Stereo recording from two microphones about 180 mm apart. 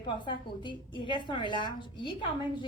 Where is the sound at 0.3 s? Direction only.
25° left (ahead or behind).